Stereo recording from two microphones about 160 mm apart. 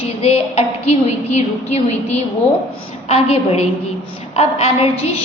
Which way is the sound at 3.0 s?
40° left (ahead or behind).